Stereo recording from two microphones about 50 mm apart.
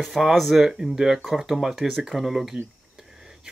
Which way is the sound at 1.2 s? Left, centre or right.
Centre.